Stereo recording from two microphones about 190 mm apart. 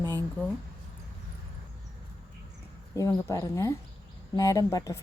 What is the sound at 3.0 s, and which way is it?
Speech, 15° left (ahead or behind).